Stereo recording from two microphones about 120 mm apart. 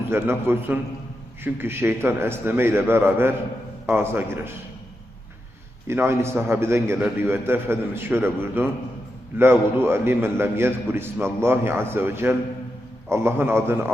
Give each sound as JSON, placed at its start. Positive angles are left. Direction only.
{"t": 0.1, "sound": "a man's voice", "side_deg": -20}
{"t": 5.9, "sound": "a man's voice", "side_deg": -20}